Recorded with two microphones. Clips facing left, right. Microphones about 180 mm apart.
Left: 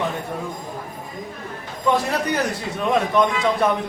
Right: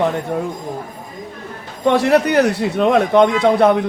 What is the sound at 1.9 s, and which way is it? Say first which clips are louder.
A man's voice: right 7 dB; 70° right (ahead or behind).